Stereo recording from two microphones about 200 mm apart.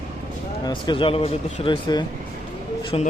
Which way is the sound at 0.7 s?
25° left (ahead or behind).